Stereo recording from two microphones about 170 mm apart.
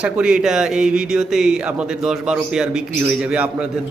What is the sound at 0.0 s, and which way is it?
Speech, 5° right (ahead or behind).